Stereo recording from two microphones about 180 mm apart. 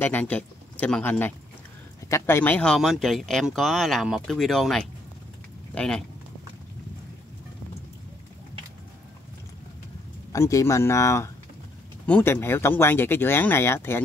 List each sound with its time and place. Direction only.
0.0 s speech: 10° left (ahead or behind)
10.3 s speech: 15° left (ahead or behind)